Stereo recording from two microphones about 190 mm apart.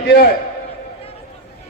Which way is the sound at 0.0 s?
60° left (ahead or behind).